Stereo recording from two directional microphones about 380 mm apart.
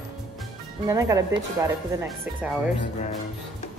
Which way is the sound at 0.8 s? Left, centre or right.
Centre.